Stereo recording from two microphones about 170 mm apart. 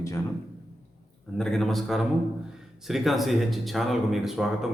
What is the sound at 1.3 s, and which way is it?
Speech, 5° left (ahead or behind).